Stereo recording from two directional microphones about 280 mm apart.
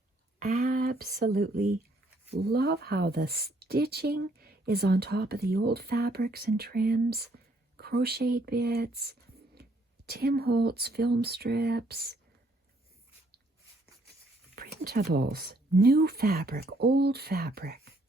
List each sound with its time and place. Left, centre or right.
0.3 s speech: right
14.5 s speech: right